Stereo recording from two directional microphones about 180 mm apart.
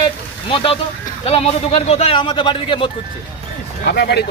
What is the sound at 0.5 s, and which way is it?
A man's voice, 30° left (ahead or behind).